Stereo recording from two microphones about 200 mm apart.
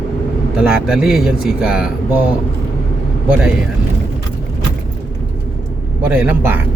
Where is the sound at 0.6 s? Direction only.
5° right (ahead or behind).